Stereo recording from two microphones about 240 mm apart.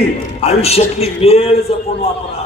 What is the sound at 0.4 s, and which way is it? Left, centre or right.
A man's voice, left.